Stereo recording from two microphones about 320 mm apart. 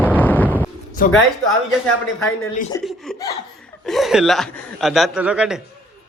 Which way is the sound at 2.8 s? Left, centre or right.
Centre.